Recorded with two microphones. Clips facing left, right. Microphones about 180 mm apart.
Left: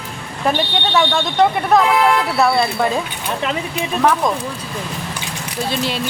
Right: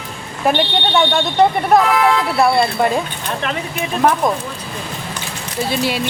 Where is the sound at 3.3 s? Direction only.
10° left (ahead or behind).